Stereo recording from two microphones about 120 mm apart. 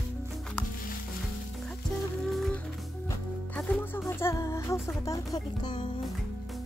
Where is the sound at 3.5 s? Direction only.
15° left (ahead or behind); by 5.7 s 30° left (ahead or behind).